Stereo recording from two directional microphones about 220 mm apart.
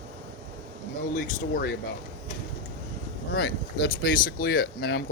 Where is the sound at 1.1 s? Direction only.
40° left (ahead or behind).